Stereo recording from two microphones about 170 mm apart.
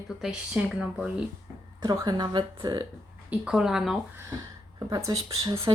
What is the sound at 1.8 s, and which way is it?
Speech, 25° right (ahead or behind).